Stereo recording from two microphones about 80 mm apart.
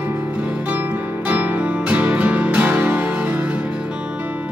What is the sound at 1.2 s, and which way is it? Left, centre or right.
Music, right.